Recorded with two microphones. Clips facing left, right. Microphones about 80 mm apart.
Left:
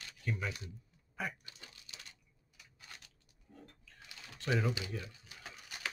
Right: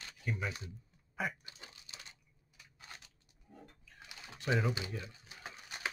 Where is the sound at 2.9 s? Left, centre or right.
Right.